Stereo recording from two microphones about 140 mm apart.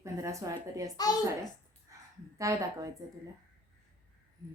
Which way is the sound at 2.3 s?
25° right (ahead or behind).